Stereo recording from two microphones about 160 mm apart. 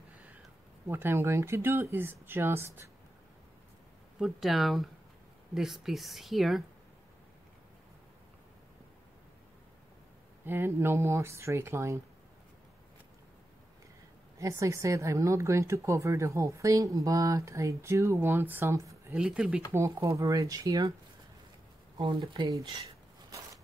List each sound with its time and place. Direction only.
0.8 s speech: 15° right (ahead or behind)
4.2 s speech: centre (ahead or behind)
10.4 s speech: 15° right (ahead or behind)
14.4 s speech: 20° right (ahead or behind)
19.1 s speech: 5° right (ahead or behind)
19.7 s speech: 20° right (ahead or behind)
21.9 s speech: 30° right (ahead or behind)